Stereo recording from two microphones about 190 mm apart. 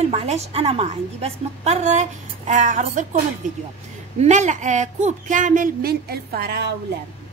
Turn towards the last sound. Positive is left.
turn(degrees=-55)  # may be behind; listen again after turning